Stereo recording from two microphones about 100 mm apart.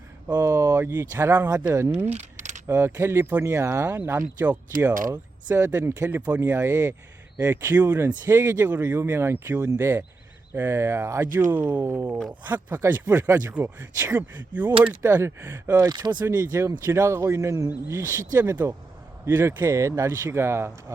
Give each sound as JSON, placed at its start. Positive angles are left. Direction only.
{"t": 0.3, "sound": "speech", "side_deg": -30}
{"t": 2.6, "sound": "speech", "side_deg": -25}
{"t": 12.3, "sound": "speech", "side_deg": -15}
{"t": 14.2, "sound": "speech", "side_deg": -15}
{"t": 15.0, "sound": "speech", "side_deg": -25}
{"t": 15.9, "sound": "speech", "side_deg": -45}
{"t": 16.4, "sound": "speech", "side_deg": -20}